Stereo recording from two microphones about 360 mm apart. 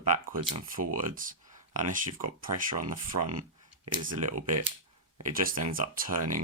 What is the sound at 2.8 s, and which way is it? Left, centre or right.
Speech, right.